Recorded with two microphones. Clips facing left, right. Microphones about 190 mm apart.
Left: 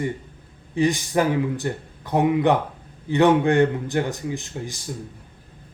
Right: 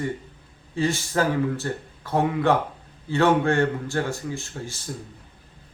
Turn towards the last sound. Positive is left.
turn(degrees=15)  # may be behind; listen again after turning